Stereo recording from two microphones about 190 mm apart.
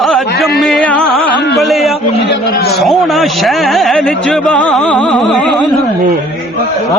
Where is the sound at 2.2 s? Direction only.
70° left (ahead or behind).